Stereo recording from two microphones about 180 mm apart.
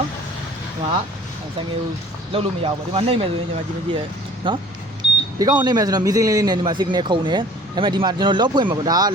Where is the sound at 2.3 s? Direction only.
30° right (ahead or behind).